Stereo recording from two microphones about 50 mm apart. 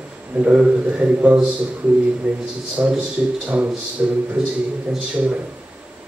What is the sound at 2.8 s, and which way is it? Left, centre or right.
A man's voice, right.